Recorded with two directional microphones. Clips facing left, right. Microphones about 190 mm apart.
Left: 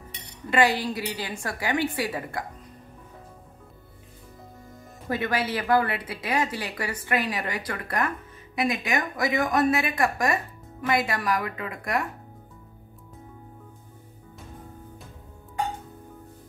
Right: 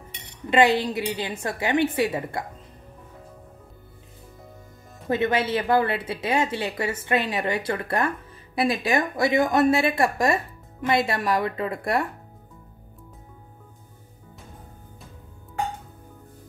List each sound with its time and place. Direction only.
0.5 s speech: 20° right (ahead or behind)
5.0 s speech: 25° right (ahead or behind)